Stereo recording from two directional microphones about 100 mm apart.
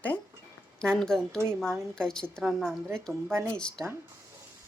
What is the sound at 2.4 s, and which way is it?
Speech, 5° right (ahead or behind).